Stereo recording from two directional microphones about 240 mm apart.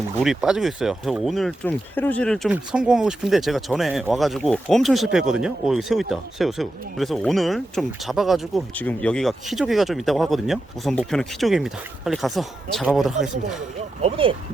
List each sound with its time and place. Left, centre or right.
0.2 s speech: centre
14.0 s speech: right